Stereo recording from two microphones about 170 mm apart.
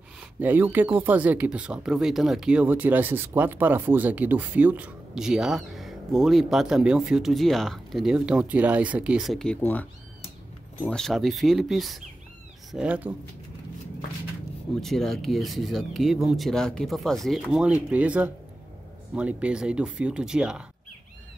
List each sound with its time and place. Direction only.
0.4 s speech: 10° right (ahead or behind)
14.8 s speech: centre (ahead or behind)